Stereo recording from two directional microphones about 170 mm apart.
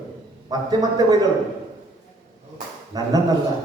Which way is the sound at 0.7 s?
20° right (ahead or behind).